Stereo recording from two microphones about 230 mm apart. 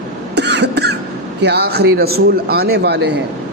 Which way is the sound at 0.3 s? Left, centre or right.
Right.